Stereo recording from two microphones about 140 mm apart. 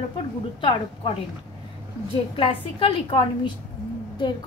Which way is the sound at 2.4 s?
40° left (ahead or behind).